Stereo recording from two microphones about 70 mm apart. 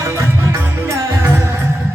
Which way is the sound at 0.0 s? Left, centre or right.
Right.